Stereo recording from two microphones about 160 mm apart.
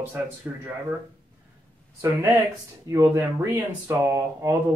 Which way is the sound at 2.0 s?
15° right (ahead or behind).